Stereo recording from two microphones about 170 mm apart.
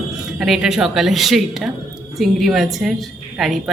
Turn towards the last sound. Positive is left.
turn(degrees=0)  # may be behind; listen again after turning